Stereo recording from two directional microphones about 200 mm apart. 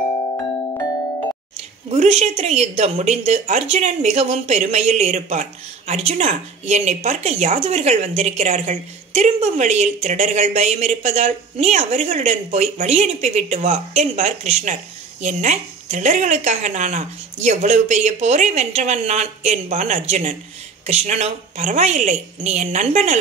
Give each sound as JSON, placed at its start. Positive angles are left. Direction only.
{"t": 1.9, "sound": "speech", "side_deg": -30}